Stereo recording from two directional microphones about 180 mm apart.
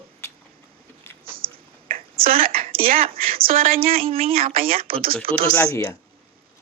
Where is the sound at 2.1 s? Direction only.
55° right (ahead or behind).